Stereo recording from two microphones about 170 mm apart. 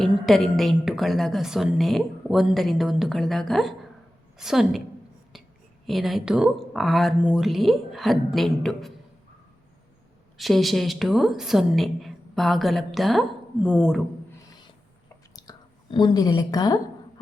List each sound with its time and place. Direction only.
0.3 s a woman's voice: centre (ahead or behind)
5.8 s a woman's voice: centre (ahead or behind)
10.3 s a woman's voice: centre (ahead or behind)
15.4 s a sound: 25° left (ahead or behind)